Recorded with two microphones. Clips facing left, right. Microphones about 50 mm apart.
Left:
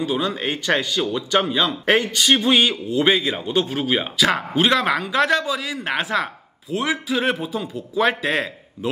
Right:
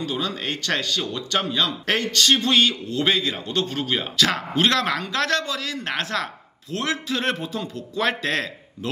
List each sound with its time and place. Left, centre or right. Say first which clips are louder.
0.0 s a man's voice: left 4 dB; centre